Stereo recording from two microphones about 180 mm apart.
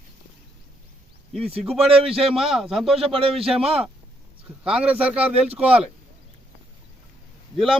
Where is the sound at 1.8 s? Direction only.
30° right (ahead or behind).